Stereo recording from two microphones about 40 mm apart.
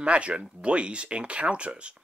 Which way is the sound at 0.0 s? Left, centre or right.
Right.